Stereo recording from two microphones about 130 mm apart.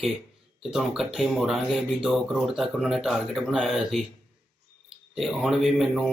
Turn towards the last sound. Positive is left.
turn(degrees=0)  # may be behind; listen again after turning